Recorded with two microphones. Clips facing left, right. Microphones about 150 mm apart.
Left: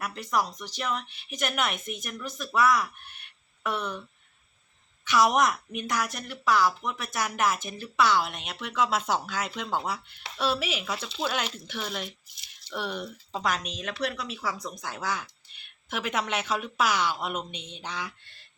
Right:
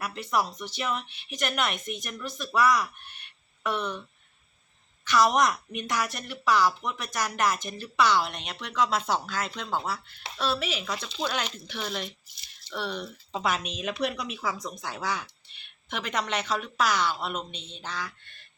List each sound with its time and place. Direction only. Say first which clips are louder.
0.0 s a woman's voice: even; centre (ahead or behind)
5.0 s a woman's voice: even; 10° left (ahead or behind)
13.3 s a woman's voice: right 1 dB; centre (ahead or behind); by 18.1 s 15° left (ahead or behind)